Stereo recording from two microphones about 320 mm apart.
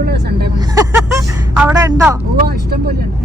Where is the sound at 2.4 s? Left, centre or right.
Right.